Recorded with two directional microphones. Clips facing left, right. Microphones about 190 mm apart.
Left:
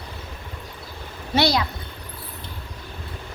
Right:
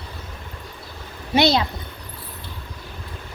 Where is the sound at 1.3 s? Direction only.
20° right (ahead or behind).